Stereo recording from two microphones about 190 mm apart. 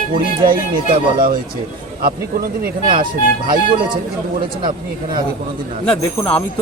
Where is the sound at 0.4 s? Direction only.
45° right (ahead or behind).